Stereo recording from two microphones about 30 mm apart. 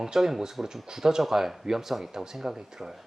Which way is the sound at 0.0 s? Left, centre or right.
Centre.